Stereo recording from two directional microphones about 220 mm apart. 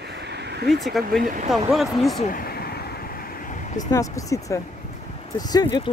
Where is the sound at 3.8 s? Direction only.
15° left (ahead or behind).